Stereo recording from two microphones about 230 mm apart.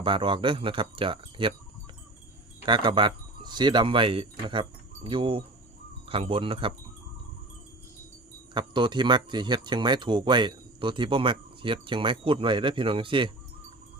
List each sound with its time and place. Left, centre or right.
0.0 s speech: right
2.6 s speech: right
8.5 s speech: centre